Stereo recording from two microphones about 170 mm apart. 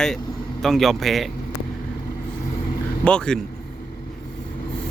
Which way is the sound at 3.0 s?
5° left (ahead or behind).